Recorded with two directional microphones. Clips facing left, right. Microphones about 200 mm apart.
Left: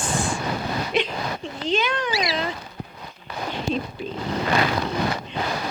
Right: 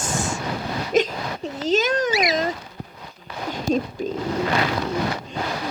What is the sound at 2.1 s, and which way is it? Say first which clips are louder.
Speech: right 4 dB; 20° right (ahead or behind).